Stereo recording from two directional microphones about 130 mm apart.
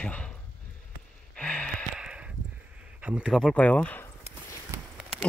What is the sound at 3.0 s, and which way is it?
Speech, 10° right (ahead or behind).